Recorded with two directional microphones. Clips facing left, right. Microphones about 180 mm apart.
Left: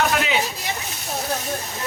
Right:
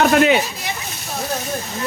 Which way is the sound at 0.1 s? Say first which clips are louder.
Right 10 dB; 50° right (ahead or behind).